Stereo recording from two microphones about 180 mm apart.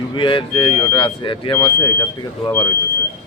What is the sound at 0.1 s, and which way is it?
Speech, 25° left (ahead or behind).